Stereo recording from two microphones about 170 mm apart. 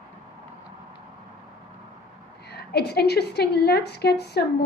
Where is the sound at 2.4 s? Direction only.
75° left (ahead or behind).